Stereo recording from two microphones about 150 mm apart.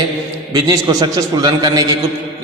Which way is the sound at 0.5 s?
25° right (ahead or behind).